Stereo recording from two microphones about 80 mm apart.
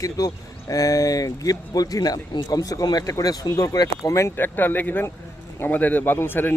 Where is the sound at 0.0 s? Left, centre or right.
Left.